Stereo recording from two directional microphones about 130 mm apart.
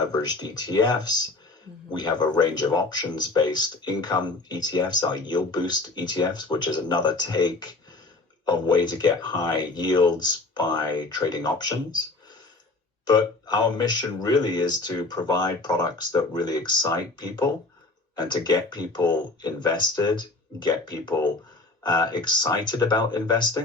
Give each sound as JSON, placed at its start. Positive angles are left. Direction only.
{"t": 0.1, "sound": "speech", "side_deg": 30}
{"t": 13.1, "sound": "speech", "side_deg": 30}